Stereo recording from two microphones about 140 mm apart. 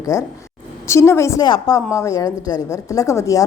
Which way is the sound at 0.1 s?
25° left (ahead or behind).